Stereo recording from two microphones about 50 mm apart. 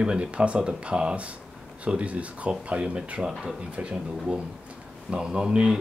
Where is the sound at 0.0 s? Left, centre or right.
Right.